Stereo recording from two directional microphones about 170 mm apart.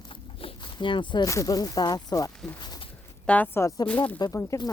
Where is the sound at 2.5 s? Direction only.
25° left (ahead or behind).